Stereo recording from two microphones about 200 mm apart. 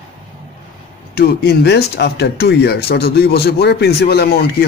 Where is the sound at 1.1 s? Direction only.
50° left (ahead or behind).